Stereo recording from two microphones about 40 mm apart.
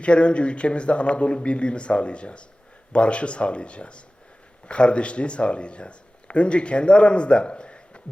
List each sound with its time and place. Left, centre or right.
0.0 s a man's voice: left